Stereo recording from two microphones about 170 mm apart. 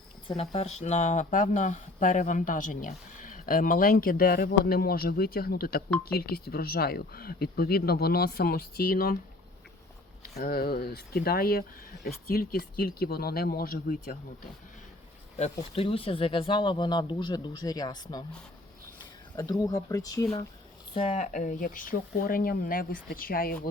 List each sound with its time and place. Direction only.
0.3 s speech: 35° left (ahead or behind); by 9.1 s 60° left (ahead or behind)
10.2 s speech: 65° left (ahead or behind)
15.7 s speech: 35° left (ahead or behind)
19.4 s speech: 20° left (ahead or behind)
20.9 s speech: 35° left (ahead or behind); by 23.6 s 60° left (ahead or behind)